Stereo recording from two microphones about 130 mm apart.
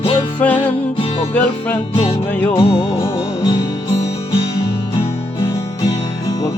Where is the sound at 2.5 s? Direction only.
45° left (ahead or behind).